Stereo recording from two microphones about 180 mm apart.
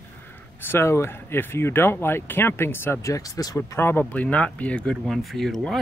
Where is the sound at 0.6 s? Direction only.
15° left (ahead or behind).